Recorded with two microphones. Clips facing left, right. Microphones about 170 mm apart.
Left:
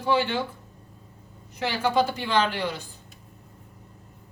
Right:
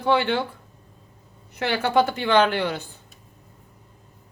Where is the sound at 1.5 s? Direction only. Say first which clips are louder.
Right 3 dB; 60° right (ahead or behind).